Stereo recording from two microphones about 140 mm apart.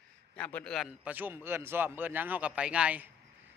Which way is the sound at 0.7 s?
5° right (ahead or behind).